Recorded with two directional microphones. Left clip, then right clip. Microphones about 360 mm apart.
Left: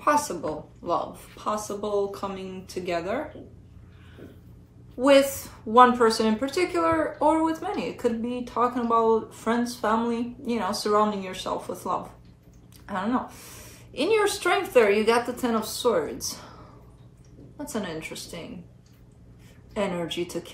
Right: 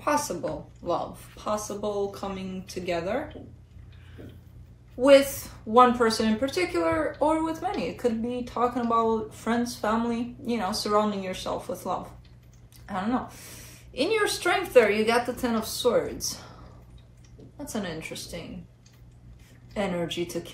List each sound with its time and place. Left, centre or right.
0.0 s a woman's voice: centre
5.0 s a woman's voice: centre
17.6 s a woman's voice: centre
19.7 s a woman's voice: centre